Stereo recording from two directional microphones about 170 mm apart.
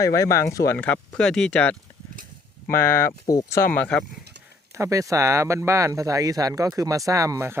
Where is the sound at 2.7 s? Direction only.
15° left (ahead or behind).